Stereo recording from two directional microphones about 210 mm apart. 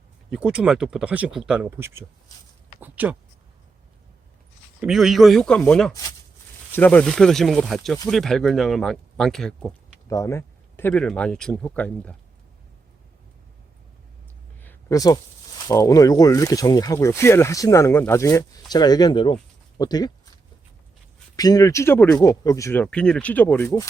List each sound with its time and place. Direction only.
0.3 s speech: 5° right (ahead or behind)
4.8 s speech: centre (ahead or behind)
5.9 s speech: 15° left (ahead or behind)
10.1 s speech: 15° left (ahead or behind)
14.6 s a sound: 10° left (ahead or behind)
15.6 s speech: 15° left (ahead or behind)
21.3 s speech: 15° left (ahead or behind)